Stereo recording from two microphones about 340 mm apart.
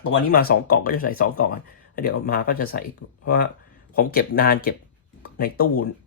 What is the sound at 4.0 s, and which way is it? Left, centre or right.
Speech, left.